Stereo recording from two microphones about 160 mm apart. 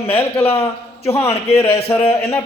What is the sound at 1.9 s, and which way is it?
Speech, 15° left (ahead or behind).